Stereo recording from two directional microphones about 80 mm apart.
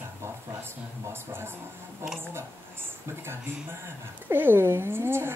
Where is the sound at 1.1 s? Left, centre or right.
Right.